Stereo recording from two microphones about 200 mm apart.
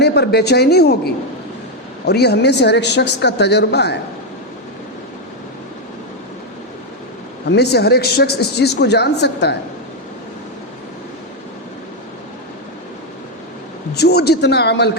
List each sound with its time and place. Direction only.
0.0 s speech: 55° left (ahead or behind)
7.4 s speech: 55° left (ahead or behind)
13.9 s speech: 55° left (ahead or behind)